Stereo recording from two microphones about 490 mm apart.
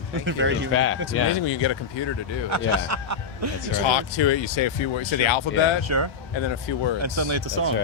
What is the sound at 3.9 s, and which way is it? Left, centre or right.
Speech, left.